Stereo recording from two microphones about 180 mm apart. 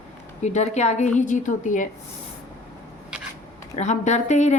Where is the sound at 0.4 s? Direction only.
40° left (ahead or behind).